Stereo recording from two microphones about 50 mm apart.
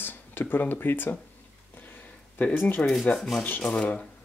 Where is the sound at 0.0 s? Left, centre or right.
Left.